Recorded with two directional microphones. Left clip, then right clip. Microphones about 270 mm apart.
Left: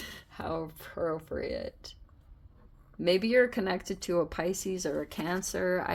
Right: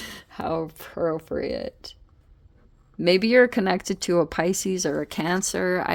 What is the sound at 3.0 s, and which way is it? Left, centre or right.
Speech, right.